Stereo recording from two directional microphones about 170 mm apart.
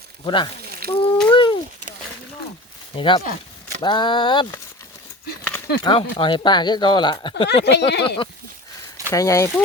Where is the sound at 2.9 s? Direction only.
30° left (ahead or behind).